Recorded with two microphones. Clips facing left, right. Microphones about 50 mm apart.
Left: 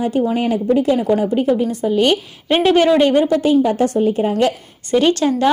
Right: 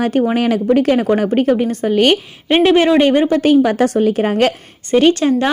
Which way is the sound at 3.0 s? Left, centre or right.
Right.